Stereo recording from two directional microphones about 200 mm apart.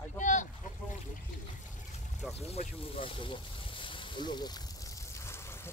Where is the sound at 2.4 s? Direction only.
30° left (ahead or behind).